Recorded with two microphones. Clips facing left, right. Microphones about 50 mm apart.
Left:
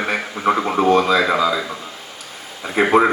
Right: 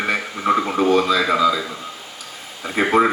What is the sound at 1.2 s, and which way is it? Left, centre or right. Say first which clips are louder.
Speech: even; left.